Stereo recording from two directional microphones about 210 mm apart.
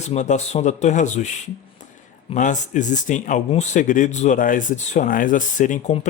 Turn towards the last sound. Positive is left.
turn(degrees=35)  # may be behind; listen again after turning